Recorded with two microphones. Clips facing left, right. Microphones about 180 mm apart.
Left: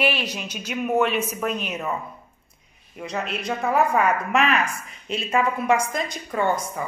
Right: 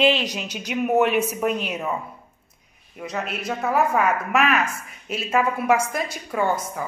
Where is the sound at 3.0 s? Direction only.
Centre (ahead or behind).